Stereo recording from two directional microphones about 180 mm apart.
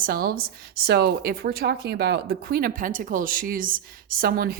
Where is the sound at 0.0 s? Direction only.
55° right (ahead or behind).